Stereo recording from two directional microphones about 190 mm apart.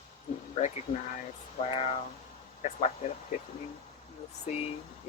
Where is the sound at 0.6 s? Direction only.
40° left (ahead or behind).